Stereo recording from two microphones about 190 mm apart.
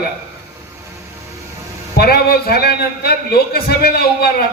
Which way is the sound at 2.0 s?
55° left (ahead or behind).